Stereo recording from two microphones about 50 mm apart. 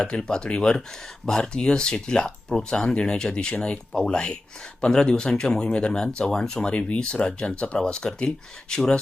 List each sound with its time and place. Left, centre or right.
0.0 s speech: centre